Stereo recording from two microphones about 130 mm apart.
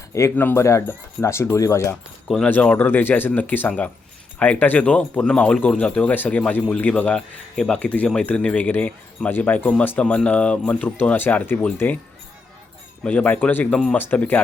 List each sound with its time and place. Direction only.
0.1 s speech: 20° left (ahead or behind)
2.2 s speech: centre (ahead or behind)
13.1 s speech: 10° left (ahead or behind)